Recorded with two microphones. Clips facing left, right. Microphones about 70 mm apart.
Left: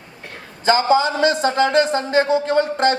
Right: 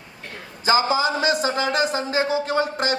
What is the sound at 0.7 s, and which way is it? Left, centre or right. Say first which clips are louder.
A man's voice: left 4 dB; centre.